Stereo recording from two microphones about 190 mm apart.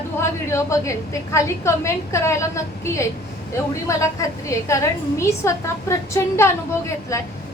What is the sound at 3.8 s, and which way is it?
A woman's voice, 15° left (ahead or behind).